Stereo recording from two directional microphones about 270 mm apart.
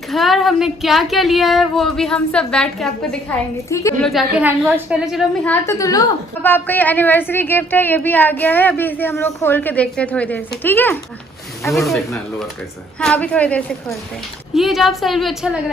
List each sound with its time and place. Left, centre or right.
0.1 s a woman's voice: centre